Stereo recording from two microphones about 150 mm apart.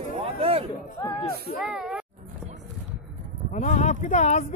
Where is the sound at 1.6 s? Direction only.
5° right (ahead or behind).